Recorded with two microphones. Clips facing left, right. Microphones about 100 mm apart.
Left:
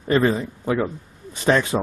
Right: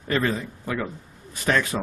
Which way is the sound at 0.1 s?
25° left (ahead or behind).